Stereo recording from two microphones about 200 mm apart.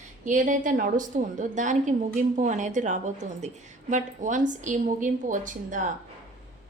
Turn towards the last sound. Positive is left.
turn(degrees=-40)  # may be behind; listen again after turning